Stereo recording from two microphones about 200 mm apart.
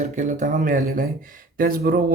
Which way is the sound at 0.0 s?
40° right (ahead or behind).